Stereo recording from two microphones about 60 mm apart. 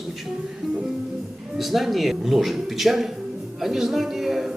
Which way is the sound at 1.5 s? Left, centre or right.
Centre.